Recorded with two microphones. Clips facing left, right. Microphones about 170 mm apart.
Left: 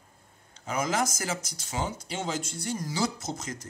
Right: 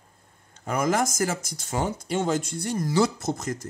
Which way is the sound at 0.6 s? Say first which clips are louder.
Right 4 dB; 55° right (ahead or behind).